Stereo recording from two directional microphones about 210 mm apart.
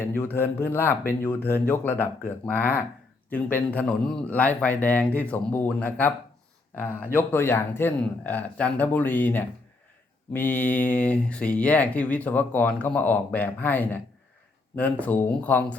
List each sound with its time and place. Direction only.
0.0 s speech: 10° left (ahead or behind)